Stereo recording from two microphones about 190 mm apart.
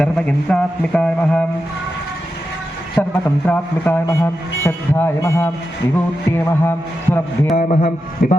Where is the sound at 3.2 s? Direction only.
10° left (ahead or behind).